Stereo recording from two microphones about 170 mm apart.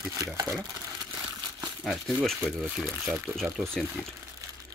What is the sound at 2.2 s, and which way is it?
Speech, centre (ahead or behind).